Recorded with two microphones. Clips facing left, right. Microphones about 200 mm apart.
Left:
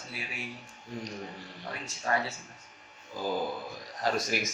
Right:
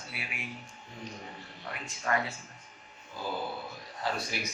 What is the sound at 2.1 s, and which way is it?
Speech, 30° left (ahead or behind).